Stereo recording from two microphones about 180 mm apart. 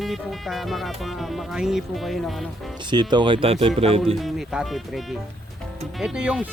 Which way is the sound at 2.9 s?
25° right (ahead or behind).